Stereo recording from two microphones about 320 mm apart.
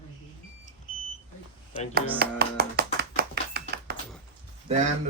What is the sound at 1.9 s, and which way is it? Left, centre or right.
Music, right.